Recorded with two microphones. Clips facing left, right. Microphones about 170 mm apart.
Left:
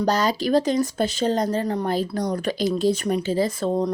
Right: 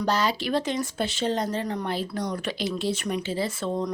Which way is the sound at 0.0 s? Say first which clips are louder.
Left 4 dB; 40° left (ahead or behind).